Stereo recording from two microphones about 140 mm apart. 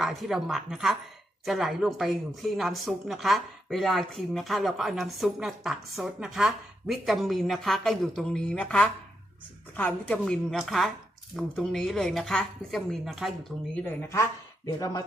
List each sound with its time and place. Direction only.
0.0 s a woman's voice: centre (ahead or behind)
13.7 s speech: 15° left (ahead or behind)